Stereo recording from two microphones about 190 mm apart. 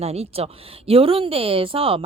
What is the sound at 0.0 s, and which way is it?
Speech, 35° right (ahead or behind).